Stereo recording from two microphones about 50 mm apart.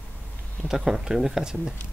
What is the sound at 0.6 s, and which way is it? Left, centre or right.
Speech, centre.